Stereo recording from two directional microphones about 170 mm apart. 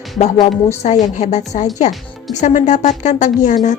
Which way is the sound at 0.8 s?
45° left (ahead or behind).